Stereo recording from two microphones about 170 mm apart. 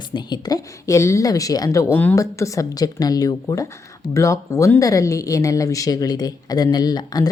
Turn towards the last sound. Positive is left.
turn(degrees=25)  # may be behind; listen again after turning